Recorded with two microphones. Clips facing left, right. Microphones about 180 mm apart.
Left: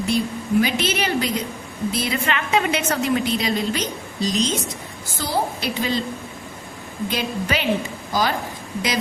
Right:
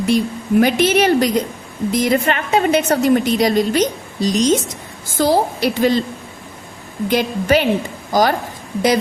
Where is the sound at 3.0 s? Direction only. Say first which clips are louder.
Right 7 dB; 50° right (ahead or behind).